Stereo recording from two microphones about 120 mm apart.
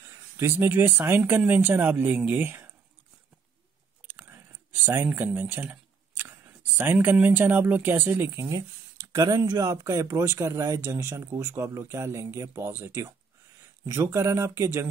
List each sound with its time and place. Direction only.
0.4 s speech: 20° right (ahead or behind)
4.0 s a sound: 15° right (ahead or behind)
9.1 s speech: 30° right (ahead or behind)